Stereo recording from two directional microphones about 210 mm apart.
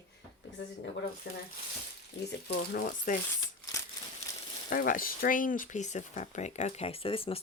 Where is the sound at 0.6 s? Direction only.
55° left (ahead or behind); by 3.1 s 40° left (ahead or behind).